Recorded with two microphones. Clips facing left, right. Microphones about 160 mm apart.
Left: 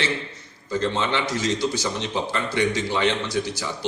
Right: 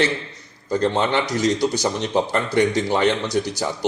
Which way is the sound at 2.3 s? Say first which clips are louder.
Right 2 dB; 45° right (ahead or behind).